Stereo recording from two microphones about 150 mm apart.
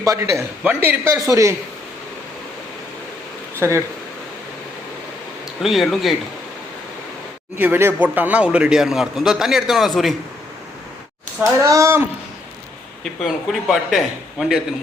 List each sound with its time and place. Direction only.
0.0 s a man's voice: 20° right (ahead or behind)
3.6 s speech: 20° right (ahead or behind)
5.6 s a man's voice: centre (ahead or behind)
7.6 s a man's voice: 15° right (ahead or behind)
11.6 s a man's voice: 20° right (ahead or behind)
13.2 s a man's voice: centre (ahead or behind)